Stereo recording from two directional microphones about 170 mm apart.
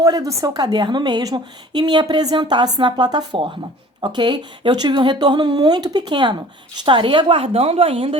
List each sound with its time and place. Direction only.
0.0 s a woman's voice: 20° right (ahead or behind)